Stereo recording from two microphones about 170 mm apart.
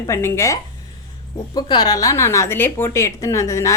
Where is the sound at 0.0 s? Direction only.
15° left (ahead or behind).